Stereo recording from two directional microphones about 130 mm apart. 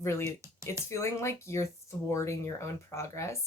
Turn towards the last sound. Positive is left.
turn(degrees=20)  # may be behind; listen again after turning